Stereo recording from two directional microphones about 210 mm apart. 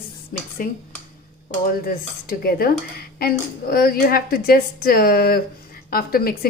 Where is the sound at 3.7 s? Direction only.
45° left (ahead or behind).